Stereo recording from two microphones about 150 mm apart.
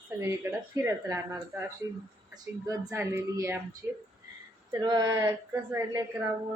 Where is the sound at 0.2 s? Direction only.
20° right (ahead or behind).